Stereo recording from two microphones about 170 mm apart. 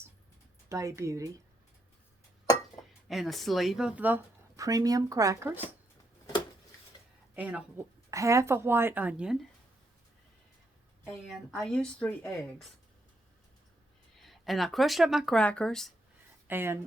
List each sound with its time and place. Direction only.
0.7 s speech: 20° right (ahead or behind)
3.1 s speech: centre (ahead or behind); by 5.5 s 15° right (ahead or behind)
6.9 s a sound: 25° left (ahead or behind)
7.3 s speech: 10° right (ahead or behind)
11.3 s speech: centre (ahead or behind)
14.2 s speech: centre (ahead or behind)
16.5 s speech: 15° right (ahead or behind)